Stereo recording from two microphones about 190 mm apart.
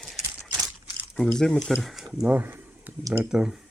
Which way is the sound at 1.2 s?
5° left (ahead or behind).